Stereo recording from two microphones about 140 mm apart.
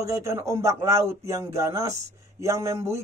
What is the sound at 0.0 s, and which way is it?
A man's voice, 20° right (ahead or behind).